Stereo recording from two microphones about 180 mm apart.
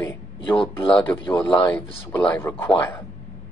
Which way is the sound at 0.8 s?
30° left (ahead or behind).